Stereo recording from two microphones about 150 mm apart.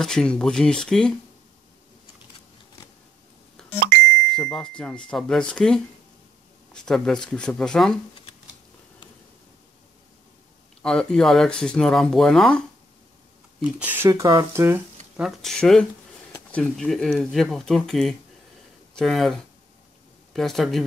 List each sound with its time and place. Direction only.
0.0 s speech: 5° left (ahead or behind)
4.3 s speech: 5° left (ahead or behind)
10.8 s speech: 5° left (ahead or behind)
13.6 s speech: 10° right (ahead or behind)
15.1 s speech: centre (ahead or behind)
20.3 s speech: centre (ahead or behind)